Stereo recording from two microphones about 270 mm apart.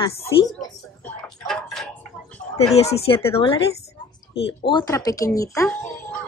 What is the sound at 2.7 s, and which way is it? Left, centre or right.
Speech, left.